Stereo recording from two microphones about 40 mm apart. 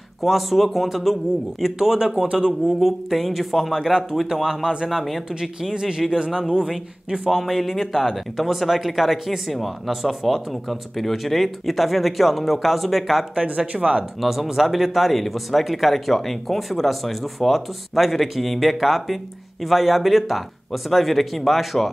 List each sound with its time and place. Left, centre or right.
0.2 s speech: centre
1.6 s speech: centre
2.8 s speech: centre
4.8 s speech: centre
5.3 s speech: centre